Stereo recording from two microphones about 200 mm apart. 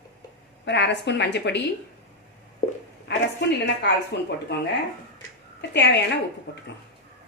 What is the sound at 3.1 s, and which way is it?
A woman's voice, 60° left (ahead or behind).